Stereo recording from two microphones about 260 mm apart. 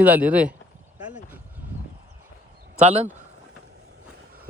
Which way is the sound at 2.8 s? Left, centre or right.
Right.